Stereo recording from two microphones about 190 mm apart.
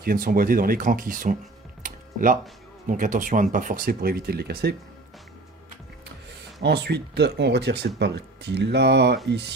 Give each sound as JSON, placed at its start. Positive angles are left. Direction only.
{"t": 0.0, "sound": "speech", "side_deg": -50}
{"t": 1.8, "sound": "typing", "side_deg": -45}
{"t": 2.8, "sound": "speech", "side_deg": -45}
{"t": 6.6, "sound": "speech", "side_deg": -60}